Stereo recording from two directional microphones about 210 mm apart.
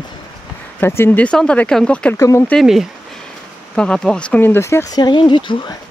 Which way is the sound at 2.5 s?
Centre (ahead or behind).